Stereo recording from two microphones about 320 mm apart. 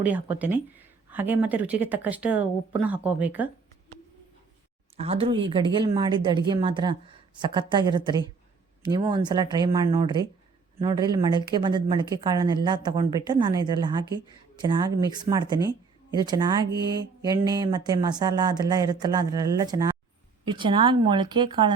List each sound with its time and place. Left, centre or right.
0.0 s a woman's voice: centre
4.9 s speech: centre